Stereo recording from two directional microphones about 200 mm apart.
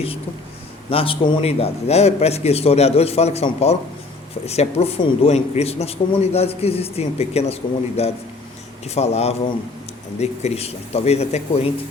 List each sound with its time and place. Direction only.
0.9 s a man's voice: 25° left (ahead or behind)